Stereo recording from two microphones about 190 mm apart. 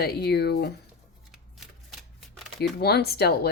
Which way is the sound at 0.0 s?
55° left (ahead or behind).